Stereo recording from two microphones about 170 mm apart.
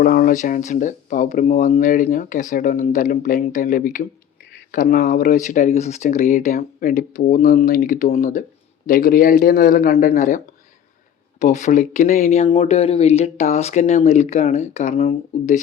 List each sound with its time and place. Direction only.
0.0 s speech: 60° left (ahead or behind); by 15.6 s 40° left (ahead or behind)